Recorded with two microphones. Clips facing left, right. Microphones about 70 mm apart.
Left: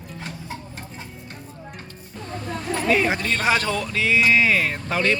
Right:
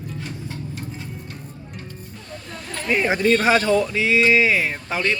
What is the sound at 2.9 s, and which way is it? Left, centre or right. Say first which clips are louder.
Speech: right 4 dB; centre.